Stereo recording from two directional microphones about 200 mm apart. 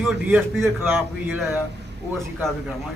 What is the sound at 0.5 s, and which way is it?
A man's voice, 10° right (ahead or behind).